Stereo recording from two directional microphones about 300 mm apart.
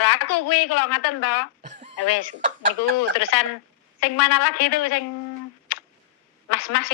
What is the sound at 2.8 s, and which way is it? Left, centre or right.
Speech, left.